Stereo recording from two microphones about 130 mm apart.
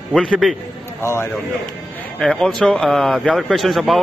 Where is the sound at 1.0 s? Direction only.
20° left (ahead or behind).